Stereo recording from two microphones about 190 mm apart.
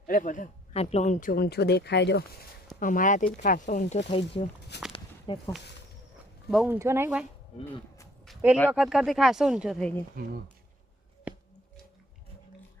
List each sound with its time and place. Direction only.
0.1 s a man's voice: 45° left (ahead or behind); by 2.2 s 65° left (ahead or behind)
2.8 s speech: 45° left (ahead or behind)
4.9 s a sound: 25° left (ahead or behind)
6.5 s speech: centre (ahead or behind)
6.7 s speech: 15° right (ahead or behind)
8.3 s a sound: 5° right (ahead or behind)
8.7 s speech: 5° right (ahead or behind)
10.2 s speech: 50° right (ahead or behind)
11.3 s a sound: 5° right (ahead or behind)